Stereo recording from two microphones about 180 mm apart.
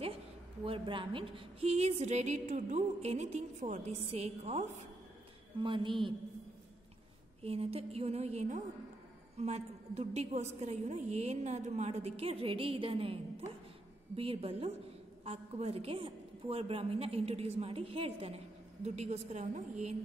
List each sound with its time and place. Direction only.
0.7 s a woman's voice: 30° right (ahead or behind)
5.6 s a woman's voice: 25° right (ahead or behind)
7.4 s a woman's voice: 35° right (ahead or behind)